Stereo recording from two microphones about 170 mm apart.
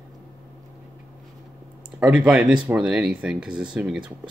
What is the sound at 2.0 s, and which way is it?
Speech, 5° right (ahead or behind).